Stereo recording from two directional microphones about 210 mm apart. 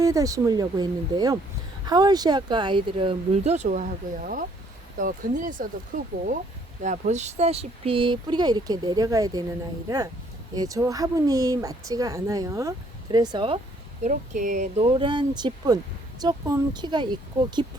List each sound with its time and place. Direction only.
0.0 s speech: 15° right (ahead or behind)
14.0 s speech: 35° right (ahead or behind)
14.8 s speech: 25° right (ahead or behind)